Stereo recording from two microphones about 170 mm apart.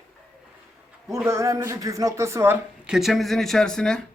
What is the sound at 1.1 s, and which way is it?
Speech, 15° right (ahead or behind).